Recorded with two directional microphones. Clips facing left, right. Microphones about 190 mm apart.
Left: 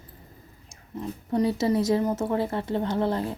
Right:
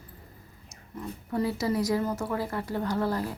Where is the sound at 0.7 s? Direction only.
20° left (ahead or behind).